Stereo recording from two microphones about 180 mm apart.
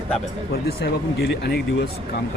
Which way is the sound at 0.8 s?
65° left (ahead or behind).